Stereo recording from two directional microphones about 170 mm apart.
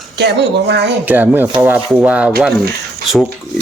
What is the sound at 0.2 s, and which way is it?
Speech, 85° right.